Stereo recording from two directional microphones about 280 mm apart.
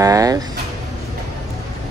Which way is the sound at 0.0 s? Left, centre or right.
Centre.